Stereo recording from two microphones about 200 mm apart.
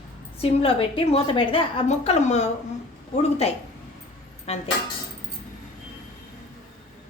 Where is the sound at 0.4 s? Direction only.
25° left (ahead or behind).